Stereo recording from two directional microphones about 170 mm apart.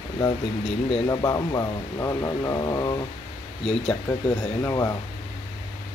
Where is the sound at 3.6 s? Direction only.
5° left (ahead or behind).